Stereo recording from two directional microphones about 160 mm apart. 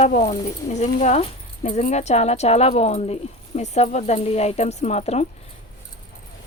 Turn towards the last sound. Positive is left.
turn(degrees=40)  # may be behind; listen again after turning